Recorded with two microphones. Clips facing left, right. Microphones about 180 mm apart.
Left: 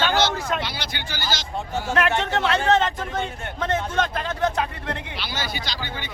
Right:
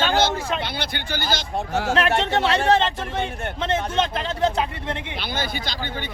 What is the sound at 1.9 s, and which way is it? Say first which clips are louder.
Speech: right 1 dB; 30° right (ahead or behind).